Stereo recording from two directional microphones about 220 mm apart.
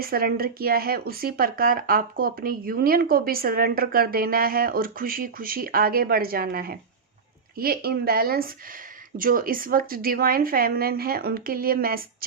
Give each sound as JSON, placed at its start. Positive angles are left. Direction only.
{"t": 0.0, "sound": "speech", "side_deg": -45}